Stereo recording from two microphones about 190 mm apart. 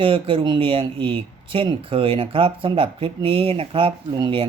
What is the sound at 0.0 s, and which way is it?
Speech, 30° right (ahead or behind).